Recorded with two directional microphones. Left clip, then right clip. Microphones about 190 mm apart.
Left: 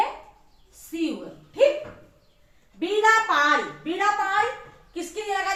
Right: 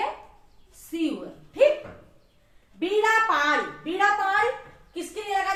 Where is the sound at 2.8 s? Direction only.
15° left (ahead or behind).